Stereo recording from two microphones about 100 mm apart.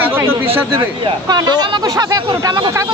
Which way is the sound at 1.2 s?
45° right (ahead or behind).